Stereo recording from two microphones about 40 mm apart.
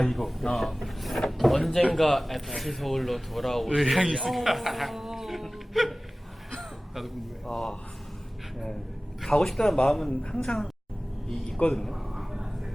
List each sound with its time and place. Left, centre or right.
0.0 s speech: centre
7.4 s a man's voice: centre
9.5 s a man's voice: centre
10.1 s speech: left
11.7 s a sound: centre